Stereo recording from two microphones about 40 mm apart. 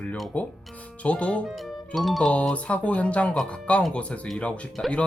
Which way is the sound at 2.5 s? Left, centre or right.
Left.